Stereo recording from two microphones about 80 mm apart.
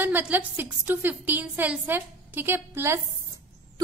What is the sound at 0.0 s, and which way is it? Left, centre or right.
A woman's voice, right.